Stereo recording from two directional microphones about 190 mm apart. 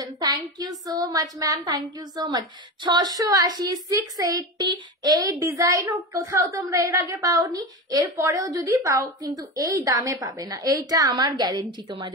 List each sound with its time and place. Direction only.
0.2 s a woman's voice: 20° right (ahead or behind)